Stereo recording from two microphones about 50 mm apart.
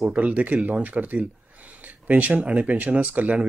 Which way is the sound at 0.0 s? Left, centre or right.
Right.